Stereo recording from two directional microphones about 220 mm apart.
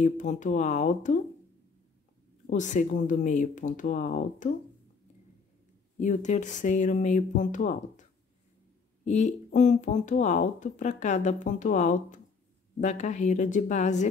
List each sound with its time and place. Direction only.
0.0 s speech: 35° left (ahead or behind)
2.5 s speech: 35° left (ahead or behind)
5.9 s speech: 35° left (ahead or behind)
9.0 s speech: 30° left (ahead or behind)